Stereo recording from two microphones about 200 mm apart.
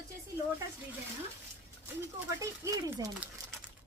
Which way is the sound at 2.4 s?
15° right (ahead or behind).